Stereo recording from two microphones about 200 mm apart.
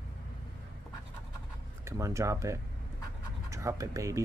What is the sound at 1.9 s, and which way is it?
Speech, 15° right (ahead or behind).